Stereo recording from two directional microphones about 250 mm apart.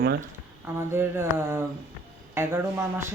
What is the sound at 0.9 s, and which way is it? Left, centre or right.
Speech, centre.